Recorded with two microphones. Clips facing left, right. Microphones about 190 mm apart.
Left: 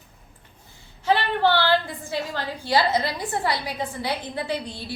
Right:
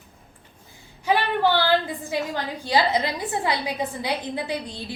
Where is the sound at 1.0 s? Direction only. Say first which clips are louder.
Even; 15° right (ahead or behind).